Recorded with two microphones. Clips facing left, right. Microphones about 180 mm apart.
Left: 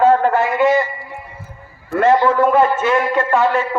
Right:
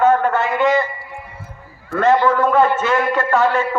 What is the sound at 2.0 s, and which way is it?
A man's voice, 25° left (ahead or behind).